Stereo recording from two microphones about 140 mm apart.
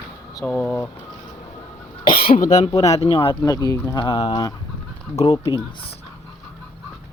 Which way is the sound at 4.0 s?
40° left (ahead or behind).